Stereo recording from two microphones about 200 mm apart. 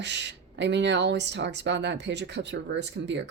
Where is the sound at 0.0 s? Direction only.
60° right (ahead or behind).